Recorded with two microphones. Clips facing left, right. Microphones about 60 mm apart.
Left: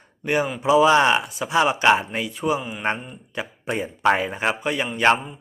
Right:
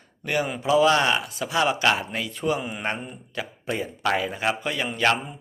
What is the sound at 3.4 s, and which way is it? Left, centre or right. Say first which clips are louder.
Speech: left 2 dB; left.